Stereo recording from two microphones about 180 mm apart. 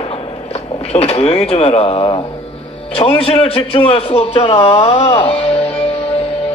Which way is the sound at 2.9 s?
35° left (ahead or behind).